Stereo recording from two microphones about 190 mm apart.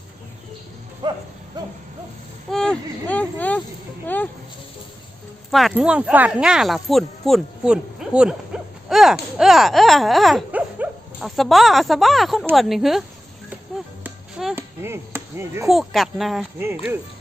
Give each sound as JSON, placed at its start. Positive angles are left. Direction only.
{"t": 1.0, "sound": "a sound", "side_deg": -20}
{"t": 2.5, "sound": "a sound", "side_deg": 5}
{"t": 4.0, "sound": "speech", "side_deg": 10}
{"t": 5.5, "sound": "speech", "side_deg": 0}
{"t": 9.4, "sound": "dog", "side_deg": 0}
{"t": 12.5, "sound": "speech", "side_deg": 0}
{"t": 13.5, "sound": "chop", "side_deg": -5}
{"t": 15.6, "sound": "speech", "side_deg": 0}
{"t": 16.6, "sound": "speech", "side_deg": -10}